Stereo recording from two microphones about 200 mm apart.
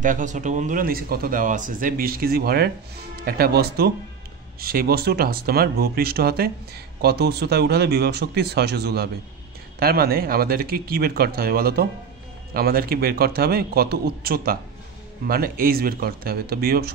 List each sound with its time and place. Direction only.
0.0 s speech: 40° right (ahead or behind)